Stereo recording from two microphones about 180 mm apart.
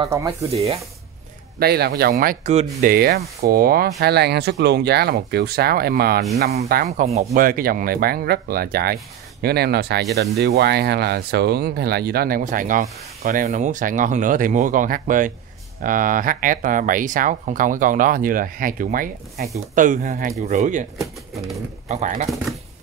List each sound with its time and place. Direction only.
0.5 s speech: 35° right (ahead or behind)
1.6 s speech: 60° right (ahead or behind); by 20.8 s 45° right (ahead or behind)
21.8 s speech: 40° right (ahead or behind)